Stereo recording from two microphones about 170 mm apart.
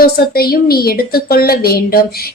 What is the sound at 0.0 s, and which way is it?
A woman's voice, 65° left (ahead or behind).